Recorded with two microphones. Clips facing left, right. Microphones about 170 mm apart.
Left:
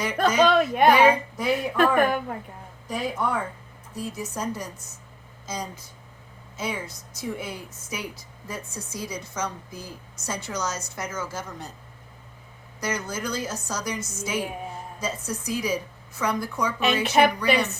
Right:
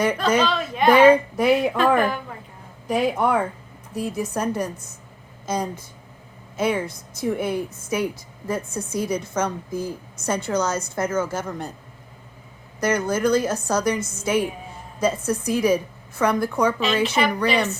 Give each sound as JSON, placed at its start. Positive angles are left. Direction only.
{"t": 0.4, "sound": "speech", "side_deg": 55}
{"t": 0.9, "sound": "a woman's voice", "side_deg": -55}
{"t": 2.0, "sound": "a woman's voice", "side_deg": 55}
{"t": 2.8, "sound": "a woman's voice", "side_deg": -65}
{"t": 12.8, "sound": "a woman's voice", "side_deg": -55}
{"t": 17.0, "sound": "speech", "side_deg": 55}